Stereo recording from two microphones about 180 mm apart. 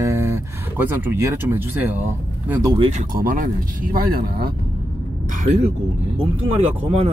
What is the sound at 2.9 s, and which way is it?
Speech, 50° right (ahead or behind).